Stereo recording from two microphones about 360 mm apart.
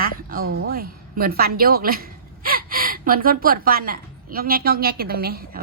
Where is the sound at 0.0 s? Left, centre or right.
Right.